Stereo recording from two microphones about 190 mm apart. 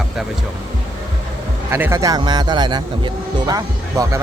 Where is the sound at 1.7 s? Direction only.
15° right (ahead or behind).